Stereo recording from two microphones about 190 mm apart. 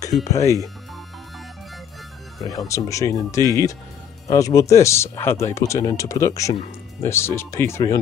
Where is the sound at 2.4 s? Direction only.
15° left (ahead or behind).